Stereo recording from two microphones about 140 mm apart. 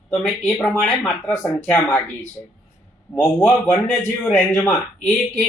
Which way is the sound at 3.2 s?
15° left (ahead or behind).